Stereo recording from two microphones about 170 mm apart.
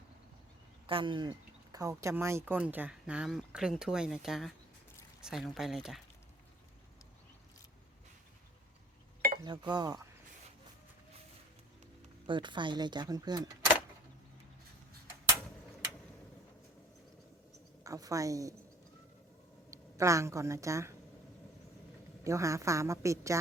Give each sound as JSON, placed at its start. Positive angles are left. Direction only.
{"t": 0.9, "sound": "speech", "side_deg": -30}
{"t": 9.4, "sound": "speech", "side_deg": -25}
{"t": 12.2, "sound": "speech", "side_deg": -30}
{"t": 17.8, "sound": "speech", "side_deg": -20}
{"t": 19.7, "sound": "speech", "side_deg": -20}
{"t": 22.2, "sound": "speech", "side_deg": -15}